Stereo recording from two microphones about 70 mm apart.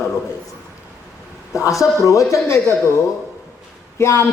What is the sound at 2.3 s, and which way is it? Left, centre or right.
Speech, left.